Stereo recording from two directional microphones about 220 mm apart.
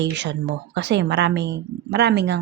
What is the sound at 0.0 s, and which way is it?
A woman's voice, 50° right (ahead or behind).